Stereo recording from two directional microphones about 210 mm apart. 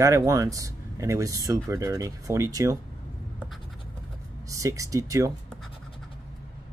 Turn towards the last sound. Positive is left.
turn(degrees=-15)  # may be behind; listen again after turning